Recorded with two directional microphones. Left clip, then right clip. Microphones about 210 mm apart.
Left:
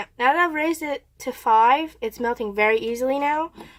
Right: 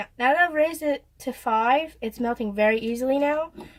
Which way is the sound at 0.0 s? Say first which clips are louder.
Left 1 dB; 35° left (ahead or behind).